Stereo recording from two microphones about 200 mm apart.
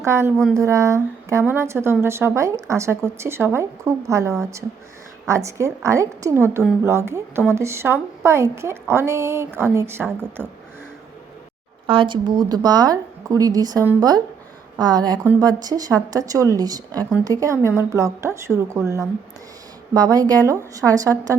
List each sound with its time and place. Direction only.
0.0 s speech: 15° right (ahead or behind)
11.9 s a woman's voice: 25° right (ahead or behind)